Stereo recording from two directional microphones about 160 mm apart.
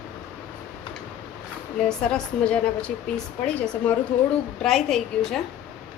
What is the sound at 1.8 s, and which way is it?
A woman's voice, 5° left (ahead or behind).